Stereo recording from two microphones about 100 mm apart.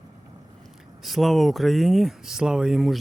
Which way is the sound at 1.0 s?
Centre (ahead or behind).